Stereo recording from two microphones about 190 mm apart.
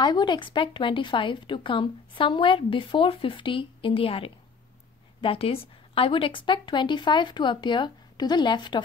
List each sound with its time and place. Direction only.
0.0 s speech: 25° left (ahead or behind)